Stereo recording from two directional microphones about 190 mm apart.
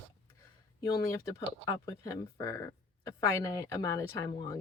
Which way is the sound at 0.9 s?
15° left (ahead or behind).